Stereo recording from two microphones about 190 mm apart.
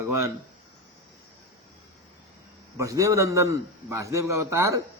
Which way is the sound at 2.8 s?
15° right (ahead or behind).